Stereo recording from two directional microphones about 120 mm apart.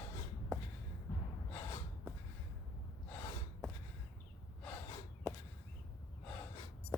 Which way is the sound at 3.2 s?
25° left (ahead or behind).